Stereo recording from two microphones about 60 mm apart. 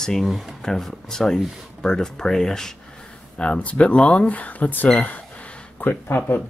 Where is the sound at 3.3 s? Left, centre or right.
Left.